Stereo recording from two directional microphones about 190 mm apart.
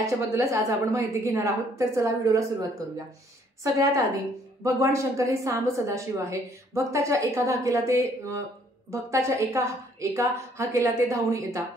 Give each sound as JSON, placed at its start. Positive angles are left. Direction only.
{"t": 0.0, "sound": "a woman's voice", "side_deg": -15}